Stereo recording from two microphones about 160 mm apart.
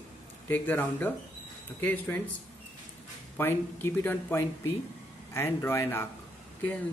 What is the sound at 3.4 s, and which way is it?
A man's voice, 15° left (ahead or behind).